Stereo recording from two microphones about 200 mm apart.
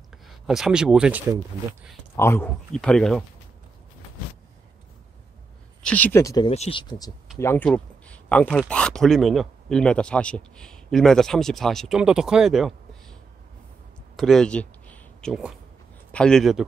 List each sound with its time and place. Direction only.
0.5 s speech: 5° right (ahead or behind)
2.1 s speech: 10° left (ahead or behind)
5.8 s speech: 5° left (ahead or behind)
6.5 s speech: 30° left (ahead or behind)
7.3 s speech: 10° left (ahead or behind)
14.1 s a sound: centre (ahead or behind)
16.1 s a man's voice: 5° left (ahead or behind)